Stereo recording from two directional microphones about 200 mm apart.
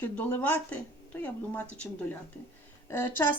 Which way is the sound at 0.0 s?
10° left (ahead or behind).